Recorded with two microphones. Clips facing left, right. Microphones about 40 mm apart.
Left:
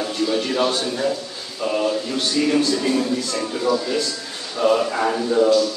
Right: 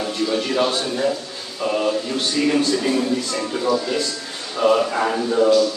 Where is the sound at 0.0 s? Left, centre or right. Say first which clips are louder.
Even; centre.